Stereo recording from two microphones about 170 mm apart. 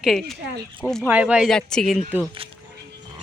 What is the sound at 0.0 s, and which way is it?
A woman's voice, centre (ahead or behind).